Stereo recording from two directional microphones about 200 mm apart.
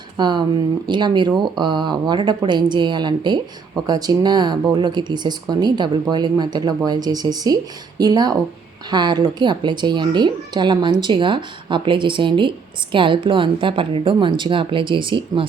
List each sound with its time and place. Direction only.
0.2 s speech: 20° right (ahead or behind)